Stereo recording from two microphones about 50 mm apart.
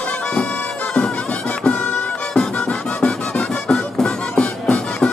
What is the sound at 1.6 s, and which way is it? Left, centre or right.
Music, centre.